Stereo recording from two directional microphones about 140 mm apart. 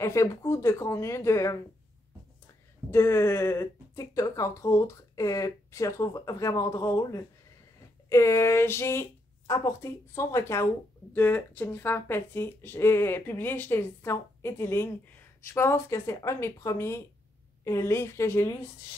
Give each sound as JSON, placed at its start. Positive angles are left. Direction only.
{"t": 0.0, "sound": "speech", "side_deg": 20}
{"t": 2.9, "sound": "speech", "side_deg": 20}